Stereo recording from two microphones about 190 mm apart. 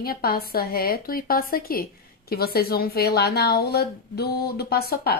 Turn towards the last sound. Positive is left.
turn(degrees=55)  # may be behind; listen again after turning